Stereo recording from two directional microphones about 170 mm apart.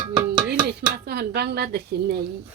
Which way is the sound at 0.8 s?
75° right (ahead or behind).